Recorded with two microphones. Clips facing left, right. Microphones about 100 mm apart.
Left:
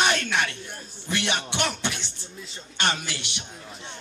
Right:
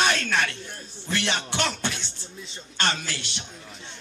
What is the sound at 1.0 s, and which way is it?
Music, 15° left (ahead or behind).